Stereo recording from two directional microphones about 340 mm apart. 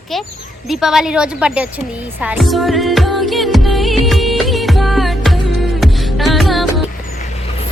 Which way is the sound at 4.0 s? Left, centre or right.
Centre.